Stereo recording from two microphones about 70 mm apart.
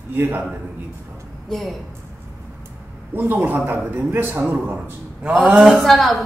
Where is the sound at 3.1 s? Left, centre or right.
Right.